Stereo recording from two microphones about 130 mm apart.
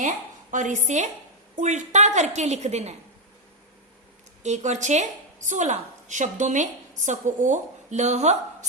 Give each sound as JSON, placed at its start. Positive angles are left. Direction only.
{"t": 0.0, "sound": "a woman's voice", "side_deg": -75}
{"t": 4.4, "sound": "a woman's voice", "side_deg": -65}